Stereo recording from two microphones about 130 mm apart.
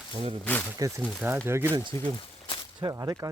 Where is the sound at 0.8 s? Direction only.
25° right (ahead or behind).